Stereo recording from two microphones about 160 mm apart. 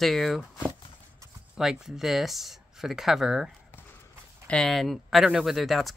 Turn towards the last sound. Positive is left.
turn(degrees=0)  # may be behind; listen again after turning